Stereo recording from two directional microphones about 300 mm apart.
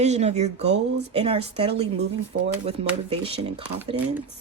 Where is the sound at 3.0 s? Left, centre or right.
Centre.